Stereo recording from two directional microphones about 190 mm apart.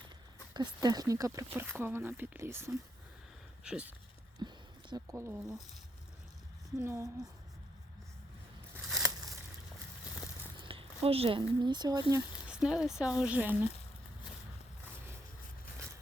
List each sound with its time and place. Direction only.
0.5 s speech: 20° right (ahead or behind)
4.4 s speech: 20° right (ahead or behind)
6.7 s speech: 15° right (ahead or behind)
9.0 s a sound: 20° right (ahead or behind)
10.6 s speech: 30° right (ahead or behind)
12.5 s speech: 5° right (ahead or behind)